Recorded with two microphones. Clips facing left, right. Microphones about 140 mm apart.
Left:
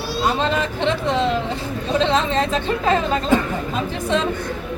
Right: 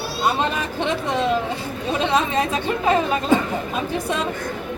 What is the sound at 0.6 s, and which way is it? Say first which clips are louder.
Speech: left 3 dB; 15° right (ahead or behind).